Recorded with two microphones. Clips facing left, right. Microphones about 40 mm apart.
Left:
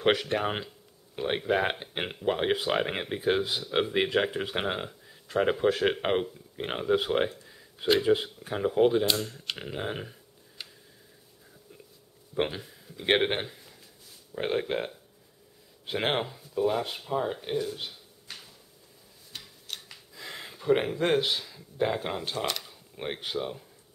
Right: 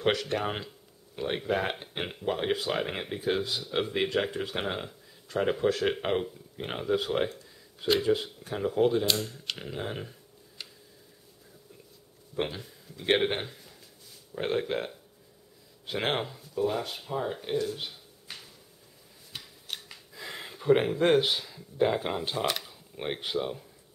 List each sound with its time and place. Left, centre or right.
0.0 s speech: centre
12.4 s speech: centre
15.9 s speech: centre
19.3 s a sound: centre